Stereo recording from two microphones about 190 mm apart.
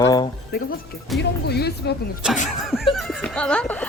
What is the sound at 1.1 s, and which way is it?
Speech, centre (ahead or behind).